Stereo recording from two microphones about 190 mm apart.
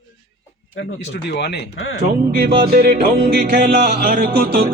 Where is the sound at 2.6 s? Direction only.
55° right (ahead or behind).